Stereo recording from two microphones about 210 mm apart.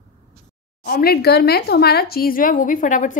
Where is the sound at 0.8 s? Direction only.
45° left (ahead or behind).